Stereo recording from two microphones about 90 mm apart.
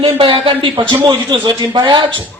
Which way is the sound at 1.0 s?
55° right (ahead or behind).